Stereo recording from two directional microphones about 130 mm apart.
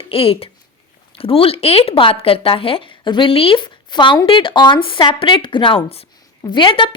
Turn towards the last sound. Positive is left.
turn(degrees=40)  # may be behind; listen again after turning